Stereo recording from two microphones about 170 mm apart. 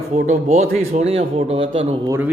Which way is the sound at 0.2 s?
45° right (ahead or behind).